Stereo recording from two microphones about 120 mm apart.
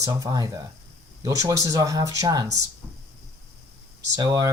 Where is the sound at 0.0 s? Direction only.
30° right (ahead or behind).